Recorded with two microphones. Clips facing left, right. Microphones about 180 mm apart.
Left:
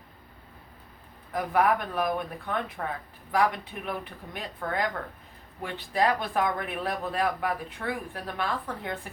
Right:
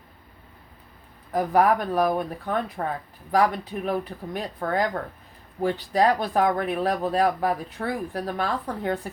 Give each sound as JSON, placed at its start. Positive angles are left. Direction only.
{"t": 1.3, "sound": "speech", "side_deg": -35}